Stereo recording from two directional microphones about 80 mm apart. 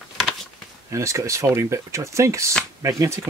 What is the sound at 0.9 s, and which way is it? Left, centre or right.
Speech, right.